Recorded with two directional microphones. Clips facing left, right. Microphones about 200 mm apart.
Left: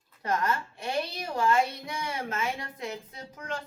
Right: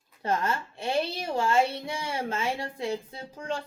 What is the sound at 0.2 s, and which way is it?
A woman's voice, 25° right (ahead or behind).